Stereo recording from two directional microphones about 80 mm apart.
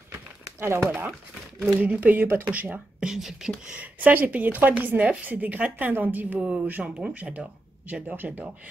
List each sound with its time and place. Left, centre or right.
0.6 s speech: right
1.8 s a woman's voice: centre
3.1 s a woman's voice: centre; by 8.5 s right